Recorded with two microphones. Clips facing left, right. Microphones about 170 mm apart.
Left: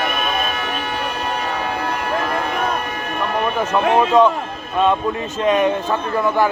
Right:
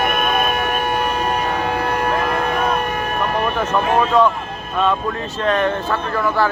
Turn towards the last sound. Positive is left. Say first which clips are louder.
# left 1 dB
turn(degrees=20)  # may be behind; listen again after turning